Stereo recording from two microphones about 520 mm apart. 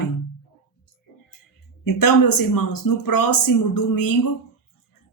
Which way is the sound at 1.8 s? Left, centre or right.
Left.